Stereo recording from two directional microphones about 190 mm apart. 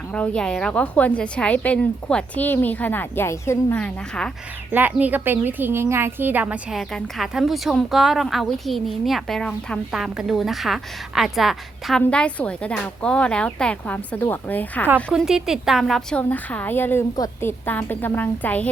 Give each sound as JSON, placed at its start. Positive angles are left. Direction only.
{"t": 0.1, "sound": "a woman's voice", "side_deg": 5}
{"t": 4.7, "sound": "a woman's voice", "side_deg": -10}
{"t": 14.8, "sound": "a woman's voice", "side_deg": -5}